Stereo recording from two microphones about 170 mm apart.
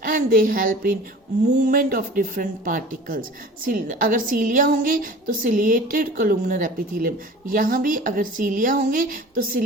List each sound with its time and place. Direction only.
0.0 s a woman's voice: 55° right (ahead or behind)